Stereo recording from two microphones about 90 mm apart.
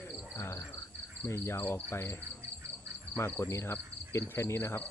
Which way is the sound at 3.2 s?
30° left (ahead or behind).